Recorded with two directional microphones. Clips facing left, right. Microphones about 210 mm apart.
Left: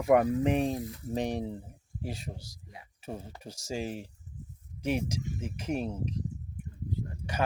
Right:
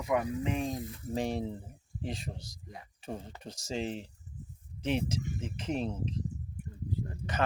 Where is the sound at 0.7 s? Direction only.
20° left (ahead or behind).